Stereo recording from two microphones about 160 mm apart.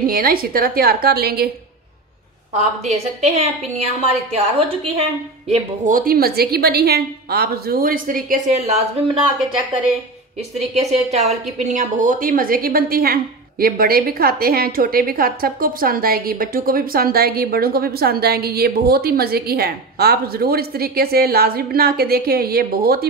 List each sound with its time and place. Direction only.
0.0 s a woman's voice: 65° right (ahead or behind)
2.5 s a woman's voice: 45° right (ahead or behind)
5.5 s a woman's voice: 55° right (ahead or behind)
10.7 s a woman's voice: 45° right (ahead or behind); by 23.0 s 70° right (ahead or behind)